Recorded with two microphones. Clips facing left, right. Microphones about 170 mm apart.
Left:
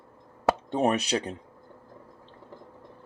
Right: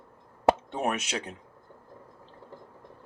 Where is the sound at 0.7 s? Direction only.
35° left (ahead or behind).